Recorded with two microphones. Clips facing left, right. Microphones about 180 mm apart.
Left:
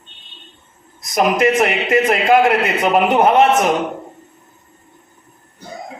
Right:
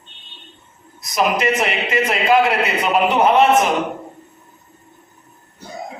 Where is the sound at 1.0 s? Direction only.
50° left (ahead or behind).